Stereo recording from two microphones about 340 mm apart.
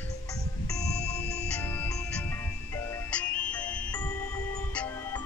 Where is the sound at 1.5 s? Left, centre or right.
Centre.